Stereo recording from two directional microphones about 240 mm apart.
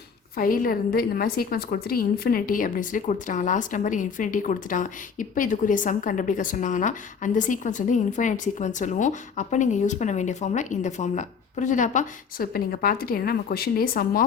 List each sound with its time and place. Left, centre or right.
0.3 s a woman's voice: left